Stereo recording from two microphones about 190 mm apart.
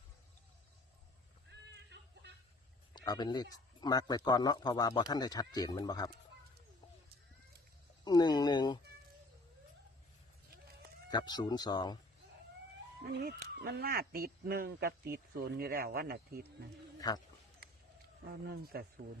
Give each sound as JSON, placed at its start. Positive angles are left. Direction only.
{"t": 1.5, "sound": "a sound", "side_deg": -65}
{"t": 2.9, "sound": "speech", "side_deg": 20}
{"t": 8.0, "sound": "speech", "side_deg": 20}
{"t": 11.1, "sound": "speech", "side_deg": 20}
{"t": 13.1, "sound": "speech", "side_deg": -60}
{"t": 17.0, "sound": "speech", "side_deg": 20}
{"t": 18.4, "sound": "speech", "side_deg": -55}